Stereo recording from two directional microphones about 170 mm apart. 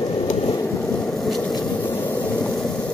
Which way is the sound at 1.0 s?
Centre (ahead or behind).